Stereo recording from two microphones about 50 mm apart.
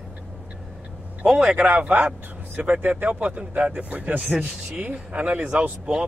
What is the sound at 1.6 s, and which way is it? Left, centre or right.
Speech, right.